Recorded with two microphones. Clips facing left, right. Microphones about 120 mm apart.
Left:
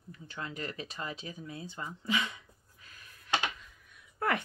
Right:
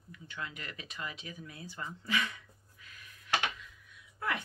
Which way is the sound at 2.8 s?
40° left (ahead or behind).